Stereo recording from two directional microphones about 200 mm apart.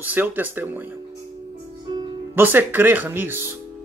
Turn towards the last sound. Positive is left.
turn(degrees=-10)  # may be behind; listen again after turning